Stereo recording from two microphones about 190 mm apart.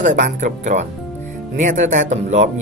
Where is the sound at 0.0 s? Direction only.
40° right (ahead or behind).